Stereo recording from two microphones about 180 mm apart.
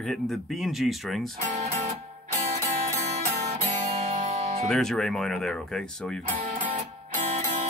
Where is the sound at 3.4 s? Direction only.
35° right (ahead or behind).